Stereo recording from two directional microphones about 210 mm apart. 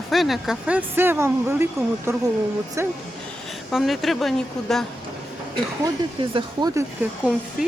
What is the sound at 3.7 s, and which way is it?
Speech, centre (ahead or behind).